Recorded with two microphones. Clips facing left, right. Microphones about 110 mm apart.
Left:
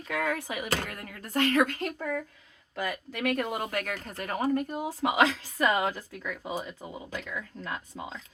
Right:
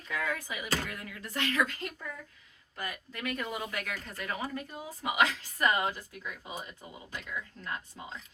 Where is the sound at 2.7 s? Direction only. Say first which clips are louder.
Left 7 dB; 90° left; by 3.4 s 70° left (ahead or behind).